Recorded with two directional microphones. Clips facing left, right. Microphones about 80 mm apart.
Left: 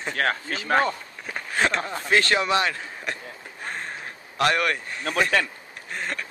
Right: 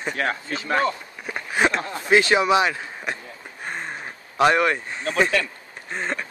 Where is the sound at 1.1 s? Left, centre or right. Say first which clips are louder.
Right 2 dB; centre.